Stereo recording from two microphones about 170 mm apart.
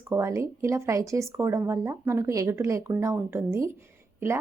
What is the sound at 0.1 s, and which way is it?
Speech, 15° right (ahead or behind).